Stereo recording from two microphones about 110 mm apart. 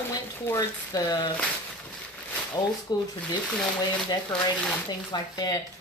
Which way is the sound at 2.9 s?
40° left (ahead or behind).